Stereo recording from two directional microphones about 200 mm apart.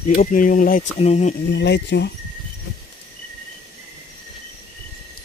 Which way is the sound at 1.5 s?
60° left (ahead or behind).